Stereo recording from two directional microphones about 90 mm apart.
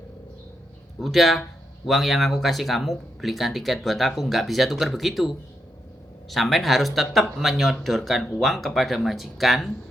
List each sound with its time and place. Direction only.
0.9 s speech: centre (ahead or behind)